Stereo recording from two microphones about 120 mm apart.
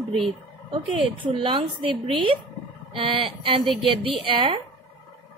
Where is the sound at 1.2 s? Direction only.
45° right (ahead or behind).